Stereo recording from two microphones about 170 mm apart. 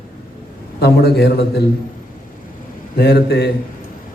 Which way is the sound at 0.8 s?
70° left (ahead or behind).